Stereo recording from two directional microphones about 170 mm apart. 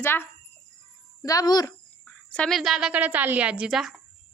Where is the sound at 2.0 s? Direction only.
5° left (ahead or behind).